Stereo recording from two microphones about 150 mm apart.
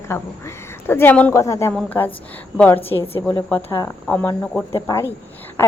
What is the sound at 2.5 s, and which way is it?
Speech, 10° left (ahead or behind).